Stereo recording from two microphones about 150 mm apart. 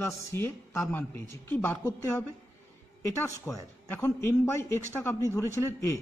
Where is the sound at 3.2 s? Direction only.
20° left (ahead or behind).